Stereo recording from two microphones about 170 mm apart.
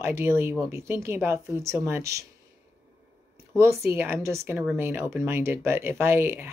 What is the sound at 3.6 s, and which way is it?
Speech, 15° right (ahead or behind).